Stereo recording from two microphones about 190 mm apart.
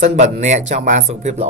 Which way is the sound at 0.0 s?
35° right (ahead or behind).